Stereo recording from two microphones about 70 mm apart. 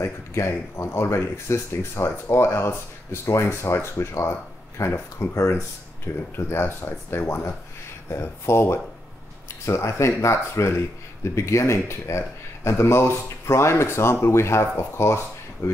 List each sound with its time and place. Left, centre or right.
0.0 s speech: left
6.3 s speech: left